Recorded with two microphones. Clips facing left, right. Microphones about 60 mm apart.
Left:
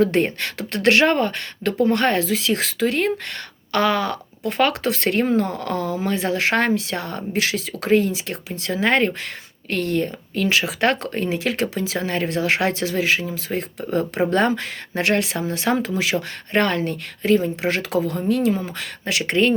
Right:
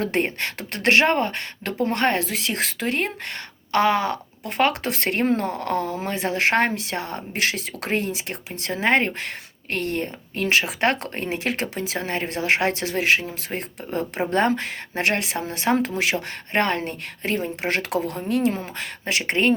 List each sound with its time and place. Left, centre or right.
0.1 s speech: right
13.5 s speech: right
15.7 s speech: right
16.5 s speech: right